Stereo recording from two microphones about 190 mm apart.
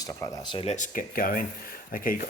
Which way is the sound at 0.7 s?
45° left (ahead or behind).